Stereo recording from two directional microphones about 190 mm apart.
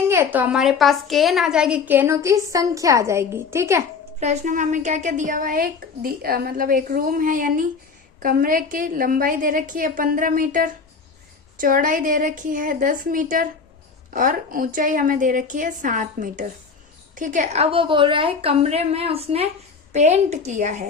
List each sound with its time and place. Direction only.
0.1 s a woman's voice: 10° right (ahead or behind)
4.2 s a woman's voice: 40° right (ahead or behind)